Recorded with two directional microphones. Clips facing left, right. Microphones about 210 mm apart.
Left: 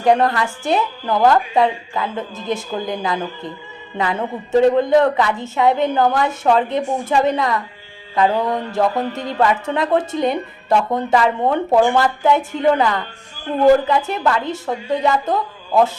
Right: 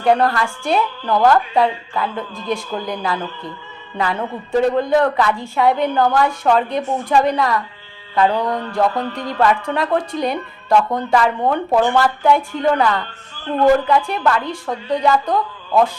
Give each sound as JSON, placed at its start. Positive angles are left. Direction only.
{"t": 0.0, "sound": "speech", "side_deg": 20}